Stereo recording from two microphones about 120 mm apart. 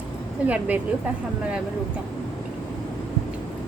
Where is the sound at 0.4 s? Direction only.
10° right (ahead or behind).